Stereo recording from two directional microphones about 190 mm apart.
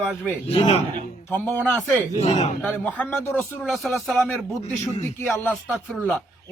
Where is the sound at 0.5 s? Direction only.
30° left (ahead or behind).